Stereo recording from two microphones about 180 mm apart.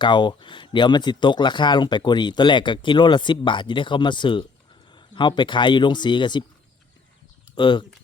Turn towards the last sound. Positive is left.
turn(degrees=25)  # may be behind; listen again after turning